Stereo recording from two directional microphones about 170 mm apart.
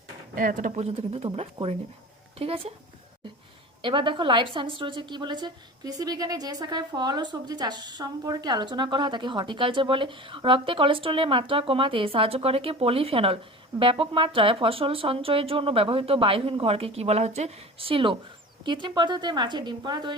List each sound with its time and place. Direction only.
0.3 s speech: 50° right (ahead or behind); by 2.7 s 35° right (ahead or behind)
3.8 s a woman's voice: 30° right (ahead or behind)